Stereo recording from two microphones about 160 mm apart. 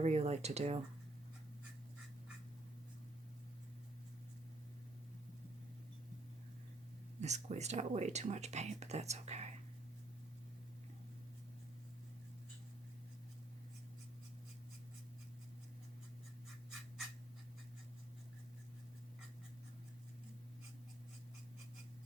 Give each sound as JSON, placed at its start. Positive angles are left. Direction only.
{"t": 0.0, "sound": "speech", "side_deg": -40}
{"t": 7.2, "sound": "speech", "side_deg": -45}